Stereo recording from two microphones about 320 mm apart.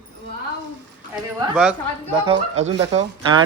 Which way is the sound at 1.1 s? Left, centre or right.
Centre.